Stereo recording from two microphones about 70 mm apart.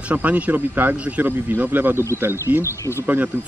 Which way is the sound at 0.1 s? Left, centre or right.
Right.